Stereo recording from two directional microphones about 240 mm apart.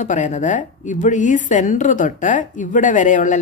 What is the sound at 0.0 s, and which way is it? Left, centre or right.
A woman's voice, left.